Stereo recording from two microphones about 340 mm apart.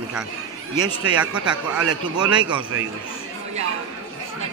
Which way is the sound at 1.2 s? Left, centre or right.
Centre.